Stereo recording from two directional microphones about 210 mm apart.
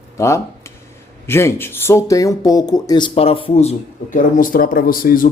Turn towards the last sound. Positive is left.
turn(degrees=40)  # may be behind; listen again after turning